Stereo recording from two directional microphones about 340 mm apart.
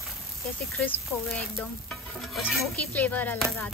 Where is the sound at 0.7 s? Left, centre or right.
Centre.